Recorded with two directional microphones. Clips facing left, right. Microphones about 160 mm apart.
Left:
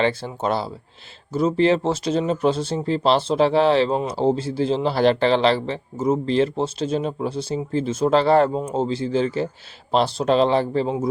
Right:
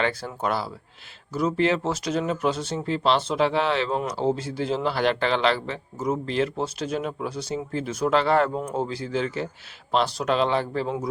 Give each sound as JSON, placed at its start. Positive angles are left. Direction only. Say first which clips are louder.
{"t": 0.0, "sound": "speech", "louder": "left 4 dB", "side_deg": 25}